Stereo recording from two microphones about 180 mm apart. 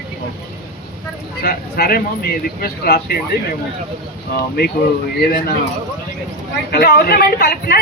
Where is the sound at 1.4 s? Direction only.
55° left (ahead or behind).